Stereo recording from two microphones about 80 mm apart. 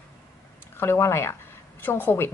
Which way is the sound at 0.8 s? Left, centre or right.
Left.